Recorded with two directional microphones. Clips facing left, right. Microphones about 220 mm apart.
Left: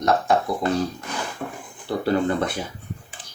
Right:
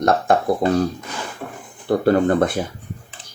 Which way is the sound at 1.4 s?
Centre (ahead or behind).